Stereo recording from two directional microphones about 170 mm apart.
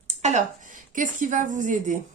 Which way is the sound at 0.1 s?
45° right (ahead or behind).